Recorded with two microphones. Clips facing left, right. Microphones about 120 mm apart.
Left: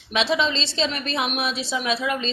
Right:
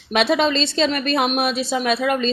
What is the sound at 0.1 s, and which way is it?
A woman's voice, 55° right (ahead or behind).